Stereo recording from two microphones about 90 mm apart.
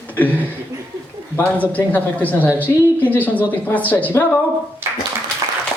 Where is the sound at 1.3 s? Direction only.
15° left (ahead or behind).